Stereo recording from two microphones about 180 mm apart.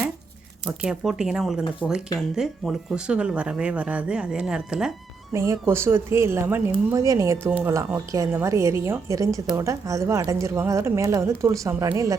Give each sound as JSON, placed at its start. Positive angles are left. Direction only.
{"t": 0.6, "sound": "speech", "side_deg": -5}
{"t": 5.3, "sound": "a woman's voice", "side_deg": -15}